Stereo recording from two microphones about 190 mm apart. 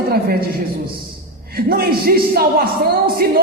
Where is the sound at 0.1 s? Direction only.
55° right (ahead or behind).